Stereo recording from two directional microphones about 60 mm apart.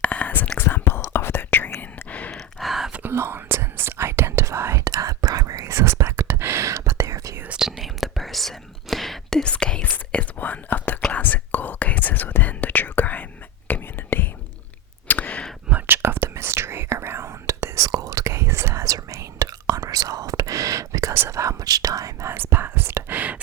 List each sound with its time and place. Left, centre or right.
0.0 s whispering: left
2.0 s sigh: left
2.3 s sigh: centre
3.1 s whispering: right
4.8 s whispering: right
5.7 s whispering: right
7.6 s whispering: centre
9.4 s whispering: centre
15.0 s a sound: left
15.7 s whispering: right
18.9 s whispering: right
21.1 s whispering: right
22.3 s whispering: right
23.1 s a sound: right